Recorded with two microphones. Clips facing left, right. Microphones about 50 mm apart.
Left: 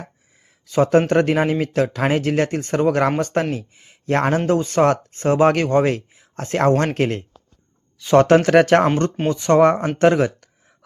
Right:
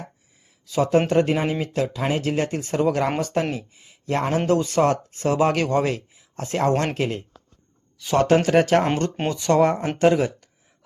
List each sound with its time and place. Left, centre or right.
0.7 s speech: left
4.4 s speech: left
9.3 s speech: left